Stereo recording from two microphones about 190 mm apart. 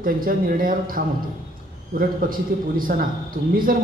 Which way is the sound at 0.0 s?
50° right (ahead or behind).